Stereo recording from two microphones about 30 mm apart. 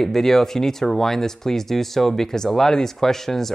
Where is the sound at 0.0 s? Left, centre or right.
Centre.